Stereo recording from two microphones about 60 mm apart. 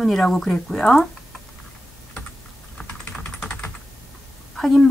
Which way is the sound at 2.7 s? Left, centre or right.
Centre.